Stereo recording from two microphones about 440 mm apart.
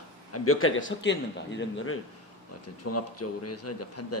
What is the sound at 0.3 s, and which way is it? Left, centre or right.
Speech, left.